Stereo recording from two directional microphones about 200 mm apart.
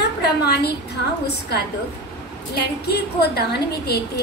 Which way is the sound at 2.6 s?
55° left (ahead or behind).